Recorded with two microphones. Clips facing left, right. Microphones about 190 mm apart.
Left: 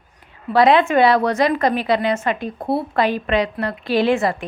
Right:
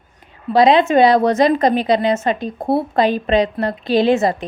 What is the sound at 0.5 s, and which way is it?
A woman's voice, 15° right (ahead or behind).